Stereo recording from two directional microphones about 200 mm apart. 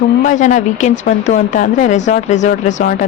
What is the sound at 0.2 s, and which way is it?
A woman's voice, 40° left (ahead or behind).